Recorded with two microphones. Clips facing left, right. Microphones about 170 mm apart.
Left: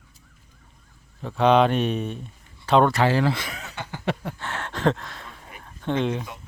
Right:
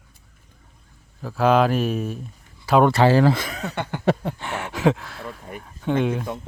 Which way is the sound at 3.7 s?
60° right (ahead or behind).